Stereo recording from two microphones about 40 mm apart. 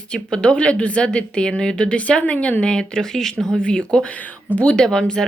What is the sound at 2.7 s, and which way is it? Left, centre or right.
A woman's voice, centre.